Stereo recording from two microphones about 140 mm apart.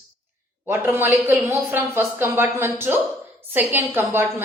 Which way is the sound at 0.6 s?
15° right (ahead or behind).